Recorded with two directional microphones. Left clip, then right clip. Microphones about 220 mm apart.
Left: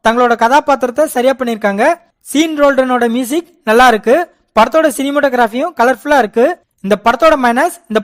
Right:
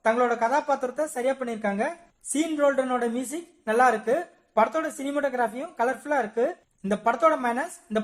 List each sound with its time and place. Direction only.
0.0 s speech: 40° left (ahead or behind)